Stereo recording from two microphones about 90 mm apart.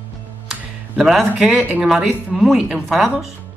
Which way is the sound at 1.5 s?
15° right (ahead or behind).